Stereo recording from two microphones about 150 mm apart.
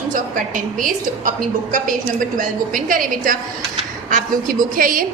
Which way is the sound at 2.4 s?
65° right (ahead or behind).